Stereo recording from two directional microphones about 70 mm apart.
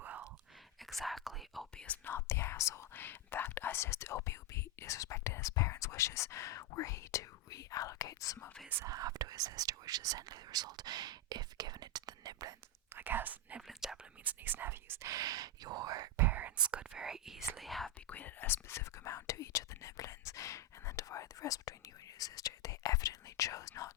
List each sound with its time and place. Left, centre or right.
0.0 s whispering: right
0.9 s whispering: centre
1.7 s speech: centre
2.0 s speech: left
2.9 s speech: left
8.8 s speech: right
13.0 s speech: right
13.6 s whispering: centre
14.3 s speech: right
15.0 s speech: right
16.1 s whispering: right
16.7 s speech: centre
18.1 s speech: left
22.2 s whispering: left